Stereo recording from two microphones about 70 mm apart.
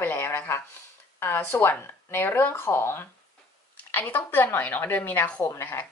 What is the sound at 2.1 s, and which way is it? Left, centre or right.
A woman's voice, left.